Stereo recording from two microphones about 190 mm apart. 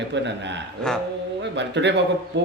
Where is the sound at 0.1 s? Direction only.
65° right (ahead or behind).